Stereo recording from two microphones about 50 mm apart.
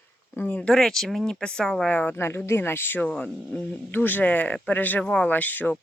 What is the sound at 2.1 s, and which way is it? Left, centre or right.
Speech, left.